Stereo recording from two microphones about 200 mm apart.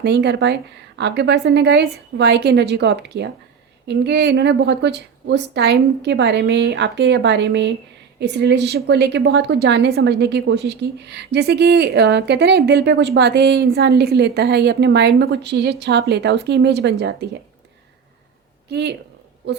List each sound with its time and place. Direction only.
0.0 s a woman's voice: 55° right (ahead or behind)
18.7 s a woman's voice: 55° right (ahead or behind)